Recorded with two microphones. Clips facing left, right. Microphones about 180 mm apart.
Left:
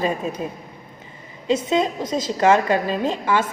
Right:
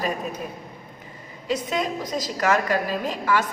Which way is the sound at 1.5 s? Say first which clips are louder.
Left 6 dB; 25° left (ahead or behind).